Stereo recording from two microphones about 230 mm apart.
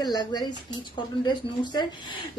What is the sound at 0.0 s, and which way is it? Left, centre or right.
A woman's voice, centre.